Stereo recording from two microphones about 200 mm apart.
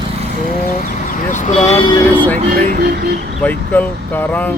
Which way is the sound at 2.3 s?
45° right (ahead or behind).